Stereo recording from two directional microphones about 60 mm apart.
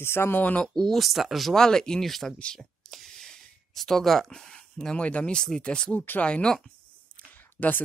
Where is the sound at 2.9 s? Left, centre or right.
Centre.